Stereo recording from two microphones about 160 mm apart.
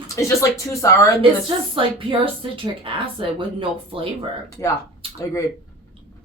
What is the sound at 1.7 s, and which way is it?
Speech, 35° right (ahead or behind).